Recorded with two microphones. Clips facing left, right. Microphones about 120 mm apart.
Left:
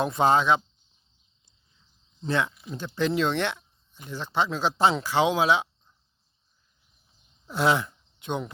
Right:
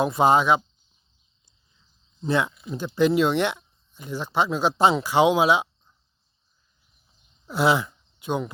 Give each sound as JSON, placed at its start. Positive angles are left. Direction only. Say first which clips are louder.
{"t": 0.0, "sound": "speech", "louder": "right 3 dB", "side_deg": -10}
{"t": 2.2, "sound": "speech", "louder": "right 3 dB", "side_deg": -10}
{"t": 7.4, "sound": "speech", "louder": "right 2 dB", "side_deg": -5}